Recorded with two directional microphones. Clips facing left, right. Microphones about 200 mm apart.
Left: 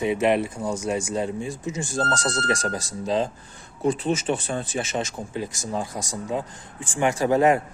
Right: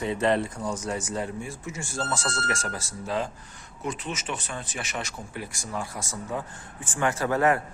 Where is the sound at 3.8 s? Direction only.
30° left (ahead or behind).